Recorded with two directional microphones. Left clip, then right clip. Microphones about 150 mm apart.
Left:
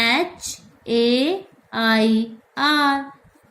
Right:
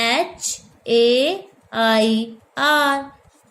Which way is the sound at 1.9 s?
70° right (ahead or behind).